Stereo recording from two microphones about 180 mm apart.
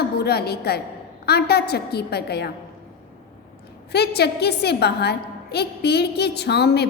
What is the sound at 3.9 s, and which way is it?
A woman's voice, 65° left (ahead or behind).